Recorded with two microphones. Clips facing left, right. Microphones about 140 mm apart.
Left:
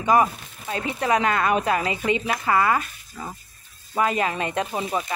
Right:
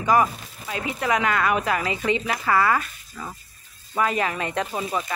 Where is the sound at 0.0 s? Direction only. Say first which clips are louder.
Left 1 dB; 25° left (ahead or behind).